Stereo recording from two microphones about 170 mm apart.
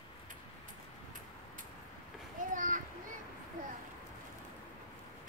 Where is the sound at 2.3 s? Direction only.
50° right (ahead or behind).